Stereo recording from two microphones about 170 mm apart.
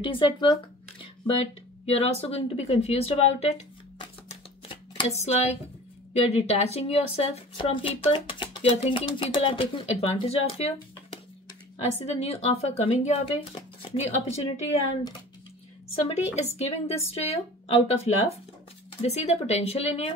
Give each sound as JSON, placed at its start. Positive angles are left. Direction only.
{"t": 0.0, "sound": "speech", "side_deg": 30}
{"t": 4.3, "sound": "a sound", "side_deg": 35}
{"t": 6.3, "sound": "speech", "side_deg": 40}
{"t": 12.0, "sound": "speech", "side_deg": 40}
{"t": 15.9, "sound": "a woman's voice", "side_deg": 35}